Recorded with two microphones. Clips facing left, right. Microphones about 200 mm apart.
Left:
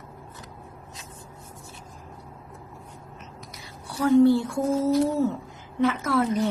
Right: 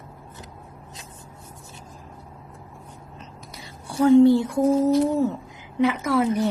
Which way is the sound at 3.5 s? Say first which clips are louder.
Right 7 dB; 25° right (ahead or behind).